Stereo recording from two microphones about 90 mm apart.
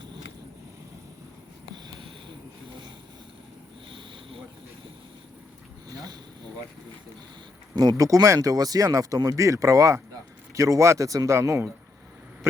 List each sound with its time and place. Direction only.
1.7 s a sound: 65° right (ahead or behind)
3.8 s vehicle: 75° right (ahead or behind)
7.8 s speech: 40° right (ahead or behind)